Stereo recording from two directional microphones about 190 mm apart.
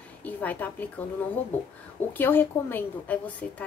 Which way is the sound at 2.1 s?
10° left (ahead or behind).